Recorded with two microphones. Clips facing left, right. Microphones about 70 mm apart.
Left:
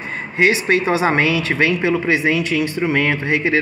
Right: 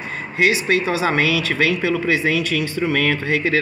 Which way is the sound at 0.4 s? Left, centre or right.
Left.